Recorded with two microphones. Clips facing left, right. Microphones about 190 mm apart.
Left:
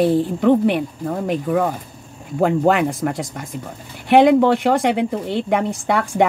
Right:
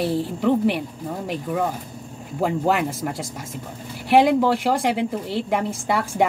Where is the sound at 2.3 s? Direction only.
60° left (ahead or behind).